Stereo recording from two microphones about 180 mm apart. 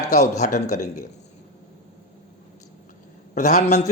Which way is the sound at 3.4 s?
40° left (ahead or behind).